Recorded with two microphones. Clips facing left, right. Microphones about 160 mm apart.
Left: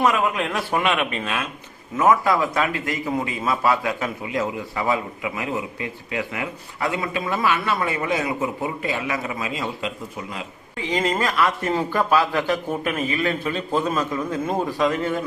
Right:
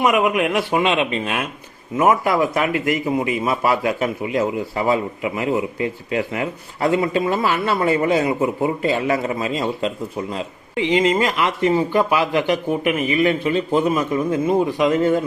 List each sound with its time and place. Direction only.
0.0 s a man's voice: 15° right (ahead or behind); by 9.9 s 35° right (ahead or behind)
11.2 s a man's voice: 25° right (ahead or behind)
14.8 s a man's voice: 25° right (ahead or behind)